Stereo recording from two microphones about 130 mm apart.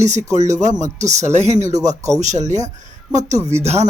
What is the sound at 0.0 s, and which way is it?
Speech, 65° right (ahead or behind).